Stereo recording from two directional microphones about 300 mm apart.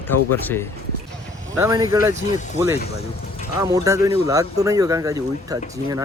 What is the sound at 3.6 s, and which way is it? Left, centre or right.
Speech, centre.